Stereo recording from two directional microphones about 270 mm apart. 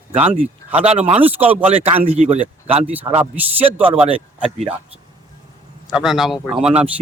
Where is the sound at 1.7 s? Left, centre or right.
Right.